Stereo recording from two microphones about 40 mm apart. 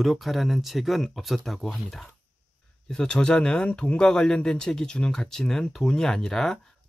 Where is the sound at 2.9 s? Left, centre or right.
Left.